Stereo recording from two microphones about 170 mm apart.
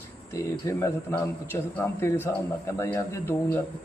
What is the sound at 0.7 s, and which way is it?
A man's voice, 15° left (ahead or behind).